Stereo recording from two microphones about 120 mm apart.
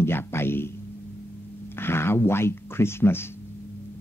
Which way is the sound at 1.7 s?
20° left (ahead or behind).